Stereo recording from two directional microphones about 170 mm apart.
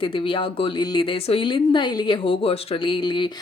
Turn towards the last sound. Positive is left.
turn(degrees=30)  # may be behind; listen again after turning